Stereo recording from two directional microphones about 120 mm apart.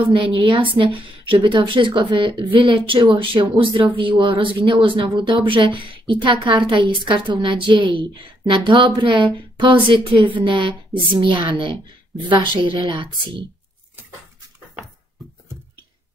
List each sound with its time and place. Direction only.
0.1 s a woman's voice: 45° right (ahead or behind)